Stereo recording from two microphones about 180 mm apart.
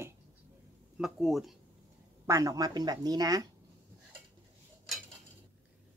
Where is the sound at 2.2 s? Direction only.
20° right (ahead or behind).